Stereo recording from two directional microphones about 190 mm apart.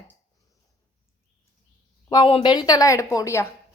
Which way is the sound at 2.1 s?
25° left (ahead or behind).